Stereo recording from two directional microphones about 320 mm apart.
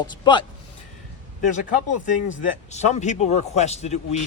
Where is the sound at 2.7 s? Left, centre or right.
Left.